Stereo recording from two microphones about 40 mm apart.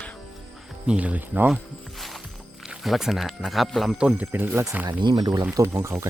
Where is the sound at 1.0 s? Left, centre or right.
Right.